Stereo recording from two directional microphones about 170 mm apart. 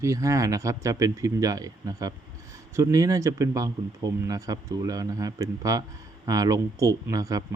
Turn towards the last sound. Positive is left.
turn(degrees=-20)  # may be behind; listen again after turning